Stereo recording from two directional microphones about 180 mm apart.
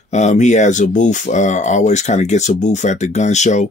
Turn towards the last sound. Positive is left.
turn(degrees=40)  # may be behind; listen again after turning